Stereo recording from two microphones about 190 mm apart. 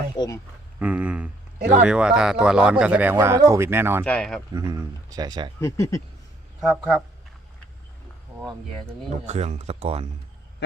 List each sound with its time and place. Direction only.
0.8 s speech: 10° right (ahead or behind)
4.0 s speech: 5° left (ahead or behind)
4.5 s speech: 20° right (ahead or behind)
5.5 s speech: 15° left (ahead or behind)
6.6 s speech: centre (ahead or behind)
9.2 s speech: 35° right (ahead or behind)